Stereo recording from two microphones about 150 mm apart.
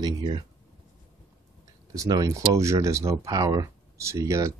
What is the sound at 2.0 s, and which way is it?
Speech, 25° right (ahead or behind).